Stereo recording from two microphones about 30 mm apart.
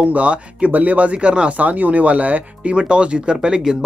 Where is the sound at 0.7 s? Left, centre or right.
Right.